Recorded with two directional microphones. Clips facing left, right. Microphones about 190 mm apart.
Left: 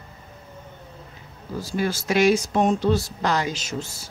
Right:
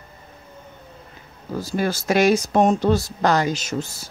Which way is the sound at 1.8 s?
45° right (ahead or behind).